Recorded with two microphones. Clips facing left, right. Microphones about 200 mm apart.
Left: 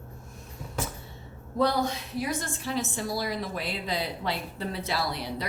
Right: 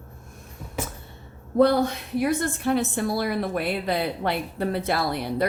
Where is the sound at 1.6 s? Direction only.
55° right (ahead or behind).